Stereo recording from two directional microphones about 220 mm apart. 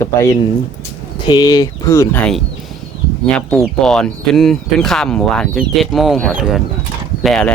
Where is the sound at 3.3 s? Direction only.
5° left (ahead or behind).